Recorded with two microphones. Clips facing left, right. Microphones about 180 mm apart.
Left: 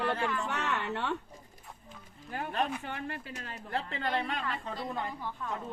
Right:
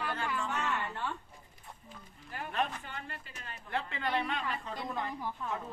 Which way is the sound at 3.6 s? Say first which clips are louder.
Left 1 dB; 35° left (ahead or behind).